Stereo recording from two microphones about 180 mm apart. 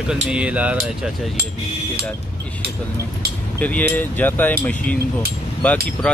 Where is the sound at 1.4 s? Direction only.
60° right (ahead or behind).